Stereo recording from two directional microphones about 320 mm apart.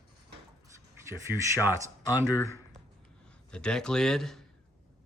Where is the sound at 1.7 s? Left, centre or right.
Centre.